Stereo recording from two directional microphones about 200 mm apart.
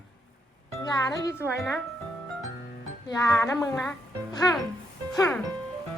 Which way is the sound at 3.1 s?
15° left (ahead or behind).